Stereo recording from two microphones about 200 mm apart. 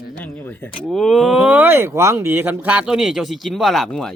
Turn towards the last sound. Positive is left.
turn(degrees=5)  # may be behind; listen again after turning